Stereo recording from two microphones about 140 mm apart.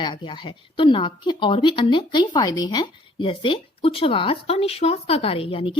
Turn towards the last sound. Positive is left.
turn(degrees=40)  # may be behind; listen again after turning